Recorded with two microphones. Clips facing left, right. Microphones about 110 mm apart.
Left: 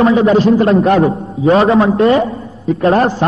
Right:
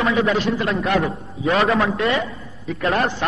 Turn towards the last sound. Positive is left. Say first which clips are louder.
# left 9 dB
turn(degrees=35)  # may be behind; listen again after turning